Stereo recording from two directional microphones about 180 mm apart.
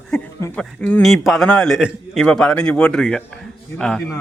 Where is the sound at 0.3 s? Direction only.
15° left (ahead or behind).